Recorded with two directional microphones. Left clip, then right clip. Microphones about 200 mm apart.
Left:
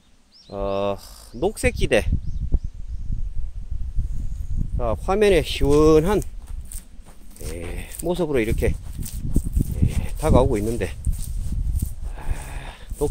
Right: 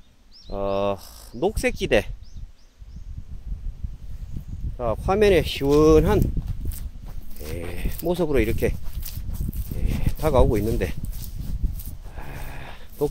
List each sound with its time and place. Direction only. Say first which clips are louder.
0.5 s speech: even; centre (ahead or behind)
4.7 s speech: even; 5° left (ahead or behind)
7.5 s a sound: right 1 dB; centre (ahead or behind)